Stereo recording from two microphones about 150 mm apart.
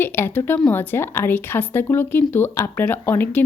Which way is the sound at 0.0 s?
15° left (ahead or behind).